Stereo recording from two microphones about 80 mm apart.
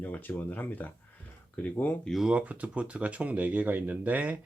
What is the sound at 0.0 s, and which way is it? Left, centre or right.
Speech, left.